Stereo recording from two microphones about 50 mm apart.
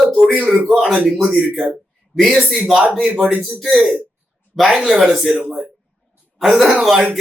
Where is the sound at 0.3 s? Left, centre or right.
Right.